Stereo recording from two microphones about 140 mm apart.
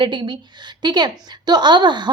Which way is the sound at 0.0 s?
35° right (ahead or behind).